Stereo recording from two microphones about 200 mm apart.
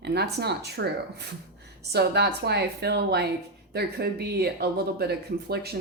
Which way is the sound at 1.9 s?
55° right (ahead or behind).